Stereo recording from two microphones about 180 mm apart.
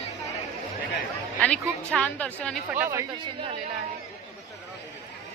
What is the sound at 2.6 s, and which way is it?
Speech, 10° right (ahead or behind).